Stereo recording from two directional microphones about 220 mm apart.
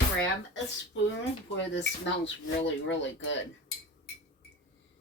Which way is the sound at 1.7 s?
55° left (ahead or behind).